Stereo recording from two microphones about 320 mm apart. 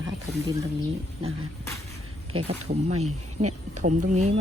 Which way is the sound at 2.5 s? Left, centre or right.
Centre.